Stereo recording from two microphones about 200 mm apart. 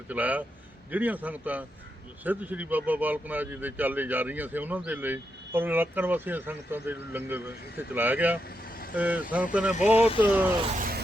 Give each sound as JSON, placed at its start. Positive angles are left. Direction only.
{"t": 0.1, "sound": "speech", "side_deg": -10}
{"t": 10.8, "sound": "music", "side_deg": -45}